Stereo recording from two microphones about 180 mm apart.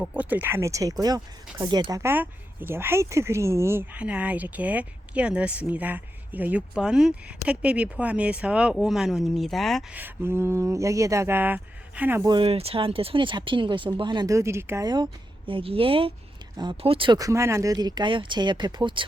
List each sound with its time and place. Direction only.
0.0 s speech: 10° right (ahead or behind)
9.9 s speech: 10° right (ahead or behind)
12.2 s a woman's voice: 25° right (ahead or behind)